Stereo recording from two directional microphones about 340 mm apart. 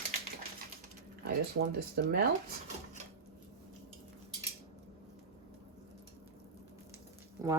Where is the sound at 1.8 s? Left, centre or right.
Right.